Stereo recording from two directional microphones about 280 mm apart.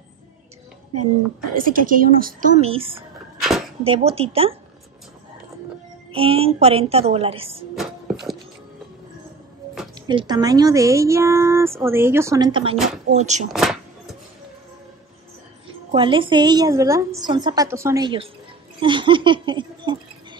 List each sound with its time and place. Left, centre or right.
1.5 s a woman's voice: right
3.3 s a sound: centre
3.8 s a woman's voice: right
6.1 s a woman's voice: centre
7.7 s a sound: centre
9.9 s speech: centre
12.7 s speech: centre
13.1 s a woman's voice: right
13.5 s a sound: centre
15.9 s speech: centre